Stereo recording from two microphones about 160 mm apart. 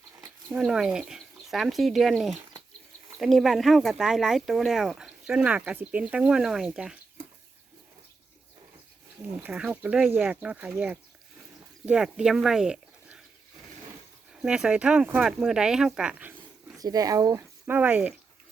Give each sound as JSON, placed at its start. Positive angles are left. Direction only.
{"t": 0.5, "sound": "speech", "side_deg": -5}
{"t": 9.4, "sound": "speech", "side_deg": -5}
{"t": 14.4, "sound": "speech", "side_deg": -5}
{"t": 16.0, "sound": "zipper", "side_deg": -10}
{"t": 16.7, "sound": "speech", "side_deg": -20}